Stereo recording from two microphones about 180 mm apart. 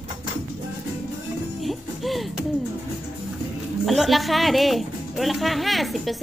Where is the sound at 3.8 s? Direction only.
Centre (ahead or behind).